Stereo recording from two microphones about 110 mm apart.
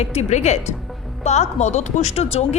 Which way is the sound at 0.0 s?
75° left (ahead or behind).